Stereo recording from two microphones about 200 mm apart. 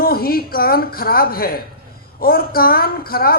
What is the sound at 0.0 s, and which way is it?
A man's voice, 50° left (ahead or behind).